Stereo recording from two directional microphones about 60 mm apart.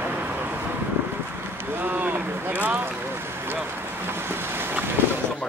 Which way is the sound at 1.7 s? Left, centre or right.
Right.